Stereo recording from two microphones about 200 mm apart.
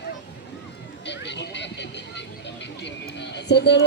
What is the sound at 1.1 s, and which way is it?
Vehicle, 60° left (ahead or behind).